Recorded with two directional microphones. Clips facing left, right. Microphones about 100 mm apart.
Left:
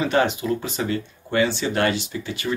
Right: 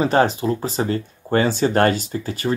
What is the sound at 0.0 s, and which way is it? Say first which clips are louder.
Speech: right 4 dB; 35° right (ahead or behind).